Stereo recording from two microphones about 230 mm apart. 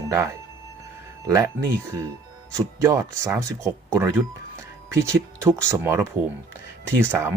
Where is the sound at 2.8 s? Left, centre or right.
Centre.